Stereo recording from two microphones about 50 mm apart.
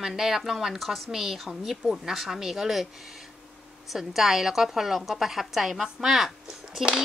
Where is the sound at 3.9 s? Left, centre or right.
Centre.